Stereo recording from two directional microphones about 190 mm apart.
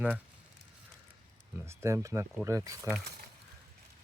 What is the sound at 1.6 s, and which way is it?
Speech, 15° right (ahead or behind).